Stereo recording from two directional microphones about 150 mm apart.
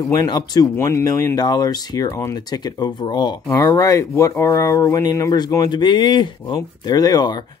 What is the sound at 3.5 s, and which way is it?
Speech, 20° left (ahead or behind).